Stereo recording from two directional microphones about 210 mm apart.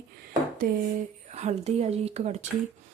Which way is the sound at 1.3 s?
35° right (ahead or behind).